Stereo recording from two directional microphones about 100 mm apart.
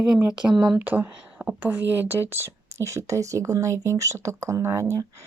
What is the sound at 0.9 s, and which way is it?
Speech, 15° right (ahead or behind).